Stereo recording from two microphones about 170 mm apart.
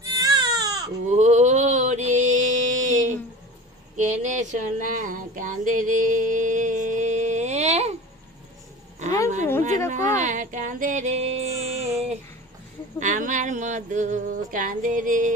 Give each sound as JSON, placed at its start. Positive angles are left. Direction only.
{"t": 0.0, "sound": "baby cry", "side_deg": -25}
{"t": 1.0, "sound": "mantra", "side_deg": -45}
{"t": 3.9, "sound": "a sound", "side_deg": -45}
{"t": 9.9, "sound": "music", "side_deg": -45}
{"t": 13.0, "sound": "speech", "side_deg": -45}